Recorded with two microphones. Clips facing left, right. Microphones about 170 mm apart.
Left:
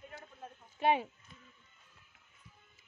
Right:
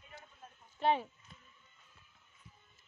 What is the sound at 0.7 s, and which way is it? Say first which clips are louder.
Speech: left 2 dB; 15° left (ahead or behind).